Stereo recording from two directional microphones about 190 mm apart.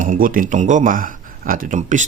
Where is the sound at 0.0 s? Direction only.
45° right (ahead or behind).